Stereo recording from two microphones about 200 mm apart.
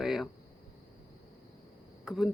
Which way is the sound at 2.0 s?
Centre (ahead or behind).